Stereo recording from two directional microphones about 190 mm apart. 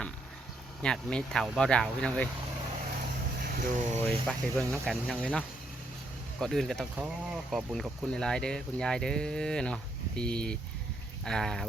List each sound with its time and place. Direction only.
0.8 s speech: 5° left (ahead or behind)
3.4 s speech: 45° right (ahead or behind)
4.0 s speech: 5° left (ahead or behind)